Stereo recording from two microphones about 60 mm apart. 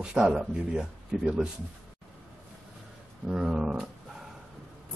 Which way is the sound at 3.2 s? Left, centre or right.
Centre.